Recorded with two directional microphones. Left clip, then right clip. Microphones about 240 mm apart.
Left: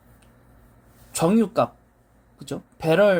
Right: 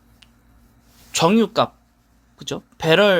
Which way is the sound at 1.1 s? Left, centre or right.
Centre.